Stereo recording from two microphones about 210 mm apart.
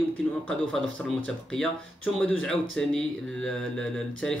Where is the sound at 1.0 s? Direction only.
5° left (ahead or behind).